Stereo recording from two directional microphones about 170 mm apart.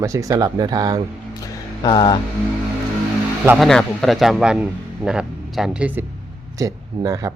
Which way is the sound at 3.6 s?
Centre (ahead or behind).